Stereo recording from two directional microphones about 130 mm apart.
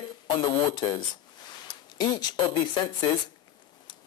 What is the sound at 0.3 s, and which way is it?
Speech, 35° left (ahead or behind).